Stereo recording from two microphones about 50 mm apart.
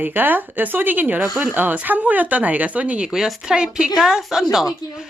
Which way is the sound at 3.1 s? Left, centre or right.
Centre.